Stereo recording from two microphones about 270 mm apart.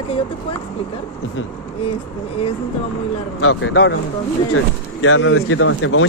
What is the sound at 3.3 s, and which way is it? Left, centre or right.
Speech, left.